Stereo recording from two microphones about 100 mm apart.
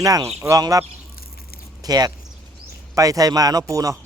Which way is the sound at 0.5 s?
35° right (ahead or behind).